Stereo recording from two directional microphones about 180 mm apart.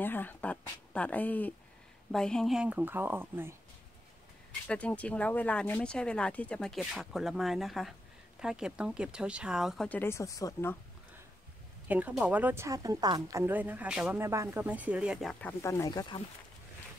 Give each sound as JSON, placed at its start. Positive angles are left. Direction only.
{"t": 0.0, "sound": "speech", "side_deg": 10}
{"t": 4.6, "sound": "speech", "side_deg": 5}
{"t": 9.8, "sound": "speech", "side_deg": 10}
{"t": 11.9, "sound": "speech", "side_deg": -10}
{"t": 15.6, "sound": "speech", "side_deg": 15}